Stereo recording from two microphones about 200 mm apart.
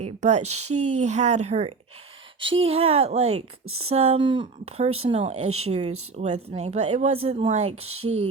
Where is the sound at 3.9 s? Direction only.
30° right (ahead or behind).